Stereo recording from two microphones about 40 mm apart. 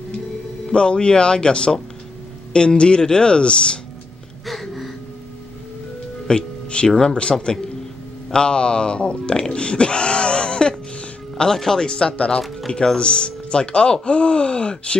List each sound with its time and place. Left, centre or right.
0.7 s speech: left
4.5 s a sound: centre
6.2 s music: left
7.0 s speech: left